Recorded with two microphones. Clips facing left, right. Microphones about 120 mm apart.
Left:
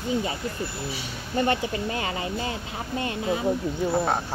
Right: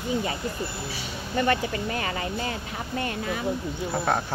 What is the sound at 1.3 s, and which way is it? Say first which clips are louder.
Speech: even; 30° left (ahead or behind).